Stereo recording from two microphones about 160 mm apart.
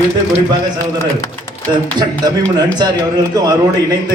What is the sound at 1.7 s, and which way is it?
Speech, 25° right (ahead or behind).